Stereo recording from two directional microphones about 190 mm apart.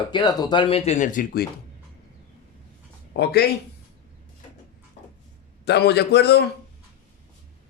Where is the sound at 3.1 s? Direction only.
65° left (ahead or behind).